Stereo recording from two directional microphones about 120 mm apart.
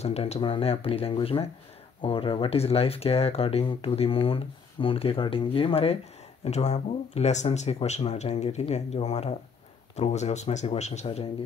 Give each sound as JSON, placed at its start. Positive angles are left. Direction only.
{"t": 0.0, "sound": "speech", "side_deg": 60}
{"t": 0.4, "sound": "speech", "side_deg": 50}
{"t": 6.4, "sound": "speech", "side_deg": 65}